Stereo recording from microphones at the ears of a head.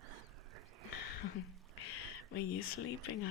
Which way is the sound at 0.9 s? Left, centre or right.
Left.